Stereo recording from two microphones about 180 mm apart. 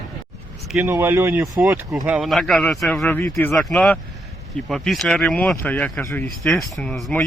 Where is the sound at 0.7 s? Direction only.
10° right (ahead or behind).